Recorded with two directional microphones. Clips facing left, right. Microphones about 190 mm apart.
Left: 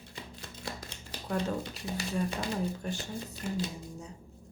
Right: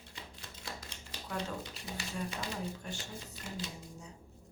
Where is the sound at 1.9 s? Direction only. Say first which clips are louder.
Left 7 dB; 40° left (ahead or behind).